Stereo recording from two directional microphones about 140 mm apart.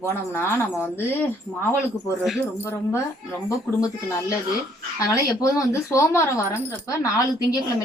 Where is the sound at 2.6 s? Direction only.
20° left (ahead or behind).